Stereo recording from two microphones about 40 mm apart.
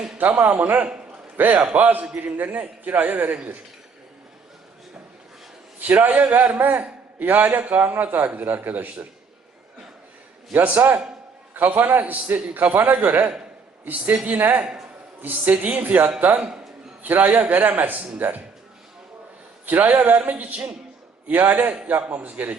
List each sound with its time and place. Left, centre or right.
0.2 s a man's voice: right
5.8 s a man's voice: right
7.6 s a man's voice: right
10.5 s a man's voice: right
15.8 s a man's voice: right
16.2 s a woman's voice: right
17.0 s a man's voice: right
19.6 s a man's voice: right